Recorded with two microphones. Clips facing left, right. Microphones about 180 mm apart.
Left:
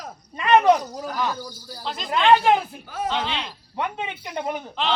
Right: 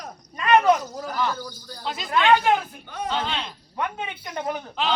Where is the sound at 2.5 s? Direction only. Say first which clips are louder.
Left 2 dB; 5° left (ahead or behind).